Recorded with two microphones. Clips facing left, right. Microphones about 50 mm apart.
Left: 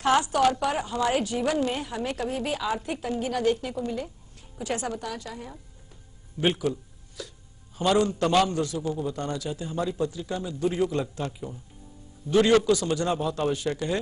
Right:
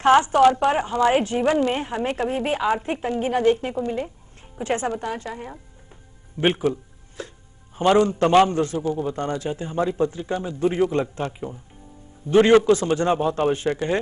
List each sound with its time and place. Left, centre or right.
0.0 s a man's voice: right